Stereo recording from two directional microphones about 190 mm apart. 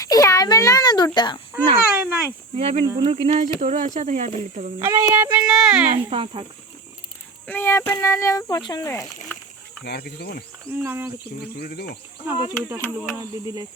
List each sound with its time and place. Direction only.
0.0 s a child's voice: 20° left (ahead or behind)
1.5 s speech: 10° right (ahead or behind)
2.6 s speech: 35° right (ahead or behind)
2.8 s speech: 20° right (ahead or behind)
3.1 s speech: 35° right (ahead or behind)
4.8 s speech: 15° right (ahead or behind)
6.1 s speech: 30° right (ahead or behind)
7.4 s speech: 10° left (ahead or behind)
9.8 s speech: 60° left (ahead or behind)
10.7 s speech: 10° right (ahead or behind)
11.5 s speech: 55° left (ahead or behind)
12.6 s speech: 10° right (ahead or behind)